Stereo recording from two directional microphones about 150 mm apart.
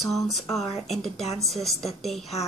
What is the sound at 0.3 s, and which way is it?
A child's voice, centre (ahead or behind).